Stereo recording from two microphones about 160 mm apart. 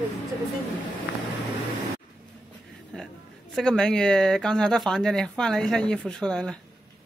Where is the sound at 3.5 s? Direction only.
5° left (ahead or behind).